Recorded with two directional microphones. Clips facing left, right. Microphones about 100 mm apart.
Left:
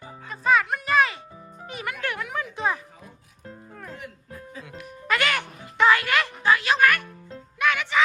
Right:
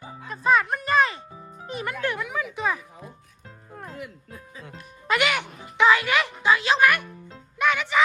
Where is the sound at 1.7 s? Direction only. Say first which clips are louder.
Right 3 dB; 30° right (ahead or behind).